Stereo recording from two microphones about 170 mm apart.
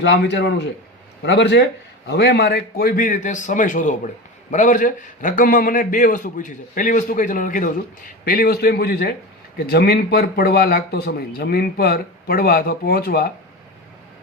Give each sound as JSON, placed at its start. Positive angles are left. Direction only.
{"t": 0.0, "sound": "a man's voice", "side_deg": 80}
{"t": 2.0, "sound": "a man's voice", "side_deg": 75}